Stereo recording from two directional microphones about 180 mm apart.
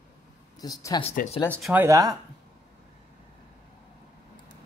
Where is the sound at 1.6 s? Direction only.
Centre (ahead or behind).